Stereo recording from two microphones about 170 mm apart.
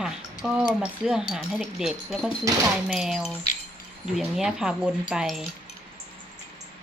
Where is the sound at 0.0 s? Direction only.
5° right (ahead or behind).